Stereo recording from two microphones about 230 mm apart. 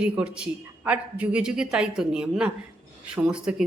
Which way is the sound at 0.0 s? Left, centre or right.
Centre.